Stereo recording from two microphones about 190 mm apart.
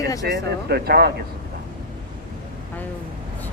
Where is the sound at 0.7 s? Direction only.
55° right (ahead or behind).